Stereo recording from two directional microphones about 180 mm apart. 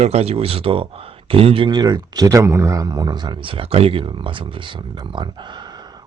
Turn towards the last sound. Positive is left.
turn(degrees=-20)  # may be behind; listen again after turning